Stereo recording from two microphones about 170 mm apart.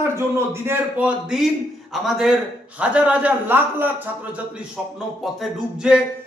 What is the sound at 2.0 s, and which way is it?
Music, 5° right (ahead or behind).